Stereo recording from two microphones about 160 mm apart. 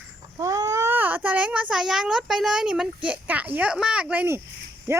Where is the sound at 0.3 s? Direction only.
25° right (ahead or behind).